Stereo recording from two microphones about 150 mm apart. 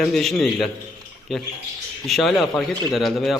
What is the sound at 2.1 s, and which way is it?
Speech, centre (ahead or behind).